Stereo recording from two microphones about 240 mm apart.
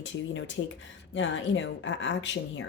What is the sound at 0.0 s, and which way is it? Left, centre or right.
A woman's voice, left.